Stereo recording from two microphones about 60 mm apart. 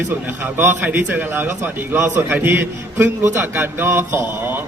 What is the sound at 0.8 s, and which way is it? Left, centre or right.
A man's voice, right.